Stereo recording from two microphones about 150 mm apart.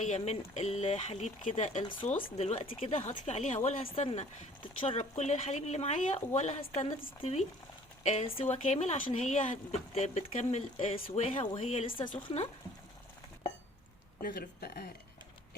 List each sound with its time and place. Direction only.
0.0 s speech: 50° left (ahead or behind)
1.8 s speech: 35° left (ahead or behind)
2.4 s speech: 45° left (ahead or behind)
11.6 s speech: 50° left (ahead or behind)
11.9 s speech: 35° left (ahead or behind)
14.2 s speech: 85° left